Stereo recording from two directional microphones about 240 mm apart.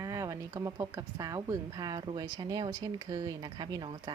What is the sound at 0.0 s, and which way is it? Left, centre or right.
Speech, centre.